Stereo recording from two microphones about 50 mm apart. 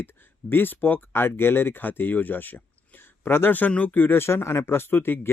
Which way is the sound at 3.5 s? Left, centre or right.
Left.